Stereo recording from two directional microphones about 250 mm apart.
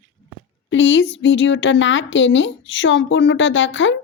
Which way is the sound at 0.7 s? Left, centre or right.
Left.